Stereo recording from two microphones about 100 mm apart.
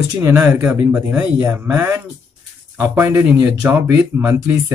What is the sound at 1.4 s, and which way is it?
Speech, 25° right (ahead or behind).